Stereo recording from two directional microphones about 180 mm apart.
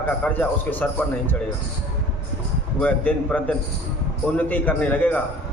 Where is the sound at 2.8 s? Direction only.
5° left (ahead or behind).